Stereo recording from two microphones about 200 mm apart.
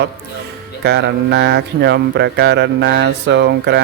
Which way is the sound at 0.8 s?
55° right (ahead or behind).